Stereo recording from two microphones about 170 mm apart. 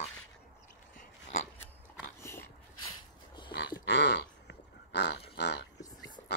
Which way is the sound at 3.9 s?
90° left.